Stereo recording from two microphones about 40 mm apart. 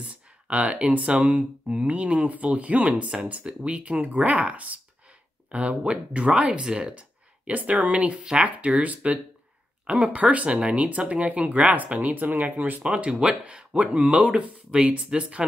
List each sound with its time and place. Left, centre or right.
0.0 s a sound: right
0.9 s speech: right
7.0 s speech: right
12.8 s speech: right